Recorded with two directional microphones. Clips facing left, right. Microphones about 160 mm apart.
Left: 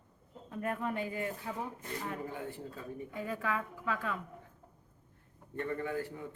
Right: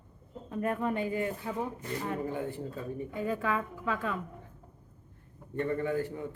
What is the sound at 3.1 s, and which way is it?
A woman's voice, 25° right (ahead or behind).